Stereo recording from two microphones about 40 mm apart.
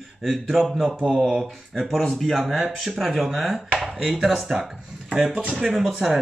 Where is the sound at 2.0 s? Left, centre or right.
Centre.